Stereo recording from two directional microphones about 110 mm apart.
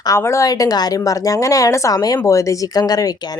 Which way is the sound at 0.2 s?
25° left (ahead or behind).